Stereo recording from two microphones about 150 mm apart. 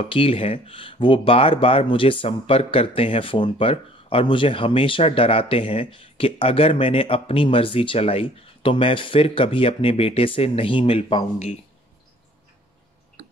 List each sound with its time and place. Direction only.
0.0 s speech: 35° left (ahead or behind)